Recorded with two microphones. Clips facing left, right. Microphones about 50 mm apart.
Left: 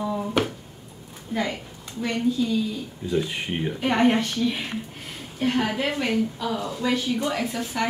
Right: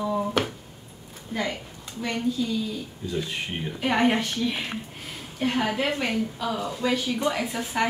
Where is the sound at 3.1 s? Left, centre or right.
Centre.